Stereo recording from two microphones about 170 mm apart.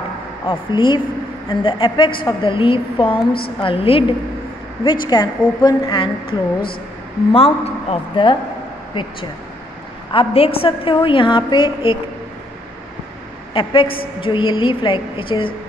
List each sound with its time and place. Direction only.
0.5 s a woman's voice: 30° left (ahead or behind)
5.0 s a woman's voice: 25° left (ahead or behind)
6.2 s a woman's voice: 60° left (ahead or behind)
7.3 s a woman's voice: 35° left (ahead or behind)
10.1 s a woman's voice: 35° left (ahead or behind)
13.5 s a woman's voice: 30° left (ahead or behind)